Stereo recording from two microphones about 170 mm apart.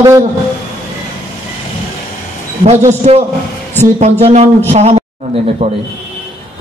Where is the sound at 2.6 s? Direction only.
40° right (ahead or behind).